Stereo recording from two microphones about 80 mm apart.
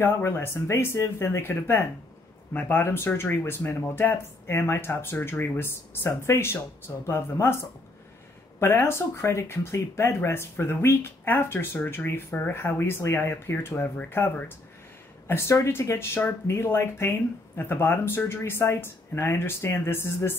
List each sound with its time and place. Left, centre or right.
0.0 s speech: left
12.1 s speech: left